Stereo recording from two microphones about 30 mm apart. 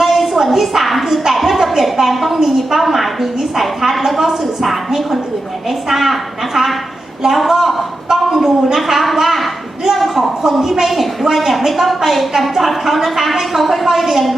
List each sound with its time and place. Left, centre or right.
0.0 s a sound: centre
3.6 s a woman's voice: centre
5.9 s a woman's voice: centre